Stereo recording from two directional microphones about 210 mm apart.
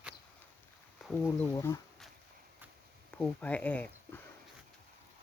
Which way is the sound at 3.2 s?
5° left (ahead or behind).